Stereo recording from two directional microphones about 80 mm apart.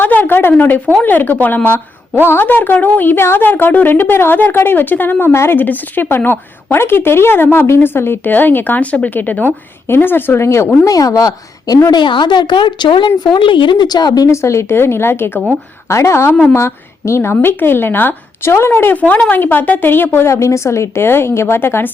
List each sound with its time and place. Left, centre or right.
0.0 s a woman's voice: left
10.9 s a woman's voice: left
11.9 s speech: left
14.3 s a woman's voice: left
20.3 s a woman's voice: left